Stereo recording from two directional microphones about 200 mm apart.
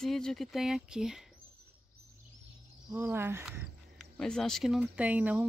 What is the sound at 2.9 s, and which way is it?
Speech, 10° right (ahead or behind).